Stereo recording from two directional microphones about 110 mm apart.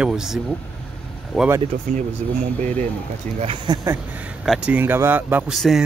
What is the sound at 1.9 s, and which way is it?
Speech, 90° right.